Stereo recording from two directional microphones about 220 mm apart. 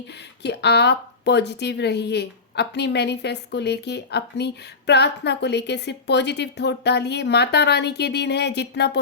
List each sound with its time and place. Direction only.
0.1 s speech: 50° left (ahead or behind)